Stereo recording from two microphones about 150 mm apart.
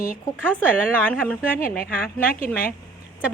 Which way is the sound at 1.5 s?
70° left (ahead or behind).